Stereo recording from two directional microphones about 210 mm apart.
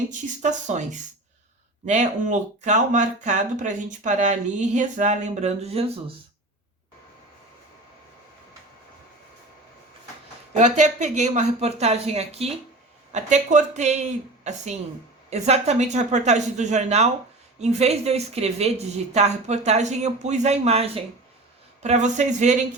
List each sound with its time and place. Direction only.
0.1 s speech: 35° right (ahead or behind)
10.5 s speech: 35° right (ahead or behind)